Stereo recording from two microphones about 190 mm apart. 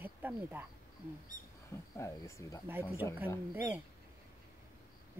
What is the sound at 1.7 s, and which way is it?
Speech, 15° left (ahead or behind).